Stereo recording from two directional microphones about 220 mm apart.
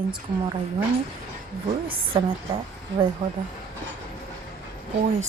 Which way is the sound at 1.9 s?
25° right (ahead or behind).